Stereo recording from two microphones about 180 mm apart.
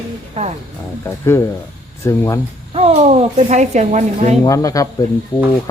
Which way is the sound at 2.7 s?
35° right (ahead or behind).